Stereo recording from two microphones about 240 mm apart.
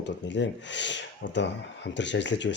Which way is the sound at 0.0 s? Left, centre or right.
Left.